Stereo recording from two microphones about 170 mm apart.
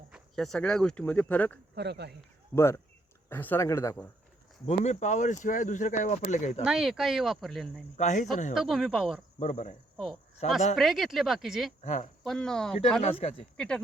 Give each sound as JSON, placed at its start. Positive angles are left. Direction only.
{"t": 0.1, "sound": "speech", "side_deg": 0}
{"t": 1.7, "sound": "speech", "side_deg": -80}
{"t": 2.6, "sound": "speech", "side_deg": 15}
{"t": 4.6, "sound": "speech", "side_deg": 40}
{"t": 6.7, "sound": "speech", "side_deg": -5}
{"t": 7.9, "sound": "speech", "side_deg": 45}
{"t": 8.5, "sound": "speech", "side_deg": 0}
{"t": 9.4, "sound": "speech", "side_deg": 45}
{"t": 10.8, "sound": "speech", "side_deg": 0}
{"t": 11.8, "sound": "speech", "side_deg": 45}
{"t": 12.2, "sound": "speech", "side_deg": 5}
{"t": 13.0, "sound": "speech", "side_deg": 35}
{"t": 13.6, "sound": "speech", "side_deg": 5}